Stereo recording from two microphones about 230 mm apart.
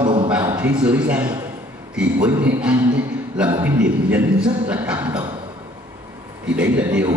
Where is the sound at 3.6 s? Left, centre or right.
Centre.